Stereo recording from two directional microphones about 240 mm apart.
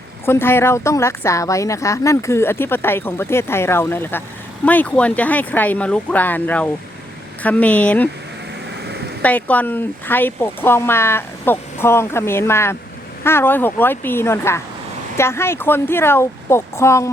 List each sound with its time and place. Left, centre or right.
0.3 s a woman's voice: centre
8.9 s a sound: right
9.2 s a woman's voice: centre